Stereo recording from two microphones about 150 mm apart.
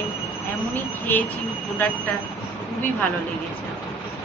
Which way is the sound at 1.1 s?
10° left (ahead or behind).